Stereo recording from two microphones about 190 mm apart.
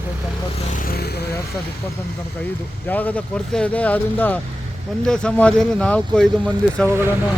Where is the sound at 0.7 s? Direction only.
50° left (ahead or behind).